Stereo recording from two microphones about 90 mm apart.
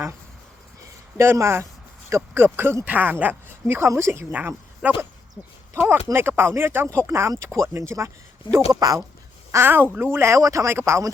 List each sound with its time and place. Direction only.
1.1 s speech: 30° right (ahead or behind)
4.3 s speech: 15° right (ahead or behind)
6.1 s speech: 25° right (ahead or behind); by 9.0 s 40° right (ahead or behind)
9.5 s speech: 25° right (ahead or behind)